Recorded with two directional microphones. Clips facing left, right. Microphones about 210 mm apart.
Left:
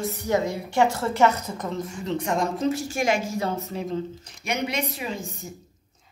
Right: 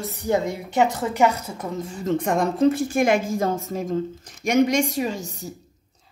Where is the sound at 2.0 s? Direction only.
50° right (ahead or behind).